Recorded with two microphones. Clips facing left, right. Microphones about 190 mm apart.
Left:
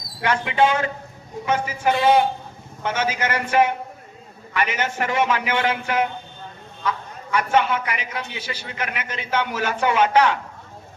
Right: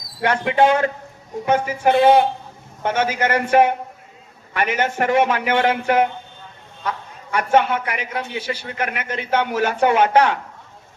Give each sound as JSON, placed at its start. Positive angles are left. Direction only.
{"t": 0.2, "sound": "a man's voice", "side_deg": -50}